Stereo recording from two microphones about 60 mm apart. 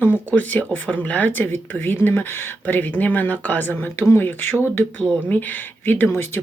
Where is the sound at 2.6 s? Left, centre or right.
Left.